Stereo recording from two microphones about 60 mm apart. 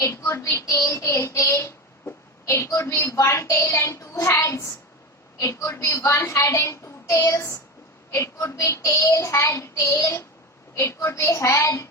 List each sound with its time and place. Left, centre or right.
0.0 s child singing: left
0.3 s child singing: left
0.6 s child singing: left